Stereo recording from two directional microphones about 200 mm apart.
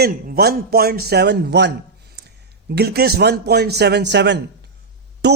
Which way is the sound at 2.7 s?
50° right (ahead or behind).